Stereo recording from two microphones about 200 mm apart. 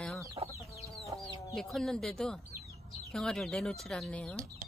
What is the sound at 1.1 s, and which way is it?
Chicken, 25° right (ahead or behind).